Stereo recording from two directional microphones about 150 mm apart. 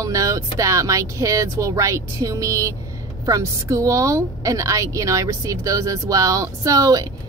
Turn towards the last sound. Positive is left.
turn(degrees=-25)  # may be behind; listen again after turning